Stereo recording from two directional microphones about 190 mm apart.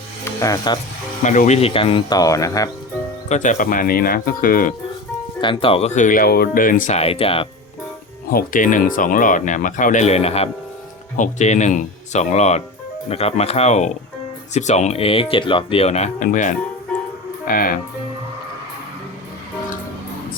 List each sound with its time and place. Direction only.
0.3 s speech: 20° left (ahead or behind)
1.2 s speech: 40° left (ahead or behind); by 2.6 s 15° left (ahead or behind)
3.2 s speech: 40° left (ahead or behind)
5.4 s speech: 25° left (ahead or behind)
8.3 s speech: 45° left (ahead or behind)